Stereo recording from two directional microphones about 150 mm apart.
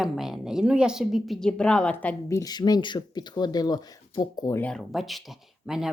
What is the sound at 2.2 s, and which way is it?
Speech, 25° left (ahead or behind).